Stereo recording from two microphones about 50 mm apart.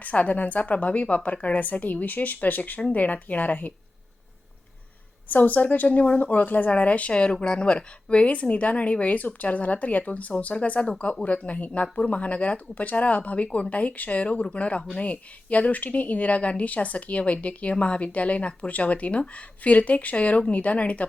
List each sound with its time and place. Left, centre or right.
0.0 s a woman's voice: left
5.3 s speech: left